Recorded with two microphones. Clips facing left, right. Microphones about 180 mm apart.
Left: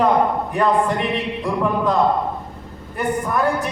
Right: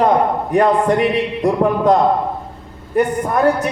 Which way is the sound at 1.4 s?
40° right (ahead or behind).